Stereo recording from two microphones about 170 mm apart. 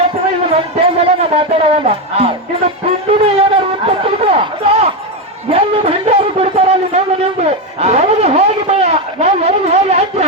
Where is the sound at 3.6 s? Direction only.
35° right (ahead or behind).